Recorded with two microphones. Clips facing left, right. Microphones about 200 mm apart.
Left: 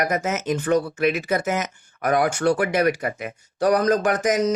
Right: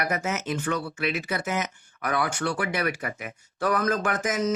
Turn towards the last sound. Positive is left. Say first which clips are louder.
# left 7 dB
turn(degrees=35)  # may be behind; listen again after turning